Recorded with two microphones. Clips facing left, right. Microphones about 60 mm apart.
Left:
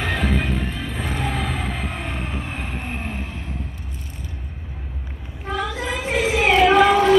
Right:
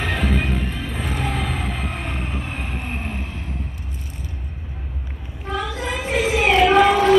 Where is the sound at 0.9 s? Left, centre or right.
Left.